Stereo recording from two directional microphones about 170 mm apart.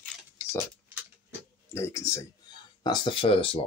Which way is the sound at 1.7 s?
15° left (ahead or behind).